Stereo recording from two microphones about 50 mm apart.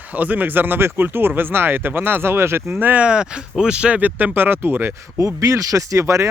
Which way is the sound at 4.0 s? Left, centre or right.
Right.